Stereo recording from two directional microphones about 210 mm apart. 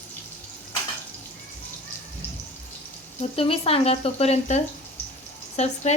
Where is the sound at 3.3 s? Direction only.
25° left (ahead or behind).